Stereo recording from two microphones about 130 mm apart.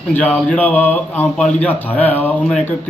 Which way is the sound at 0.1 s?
10° left (ahead or behind).